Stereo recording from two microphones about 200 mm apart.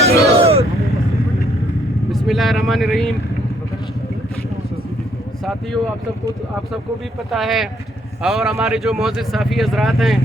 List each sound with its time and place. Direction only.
0.0 s vehicle: 30° right (ahead or behind)
2.1 s speech: centre (ahead or behind)
7.3 s speech: centre (ahead or behind)